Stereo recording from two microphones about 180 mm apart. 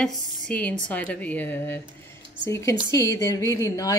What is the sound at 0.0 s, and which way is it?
A woman's voice, 5° left (ahead or behind).